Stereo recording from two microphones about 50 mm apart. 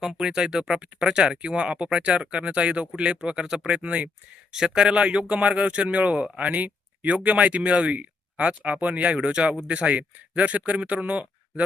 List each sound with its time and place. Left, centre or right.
0.2 s speech: centre
4.5 s speech: centre; by 11.6 s right